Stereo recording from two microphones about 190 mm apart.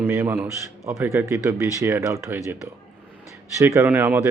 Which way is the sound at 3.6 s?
15° right (ahead or behind).